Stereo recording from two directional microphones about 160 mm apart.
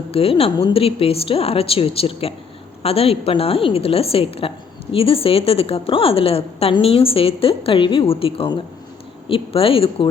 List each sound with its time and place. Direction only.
0.1 s a woman's voice: 35° left (ahead or behind)